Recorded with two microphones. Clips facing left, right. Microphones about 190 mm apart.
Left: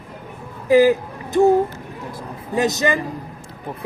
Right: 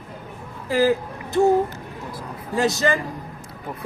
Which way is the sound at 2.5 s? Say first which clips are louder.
Left 1 dB; 20° left (ahead or behind).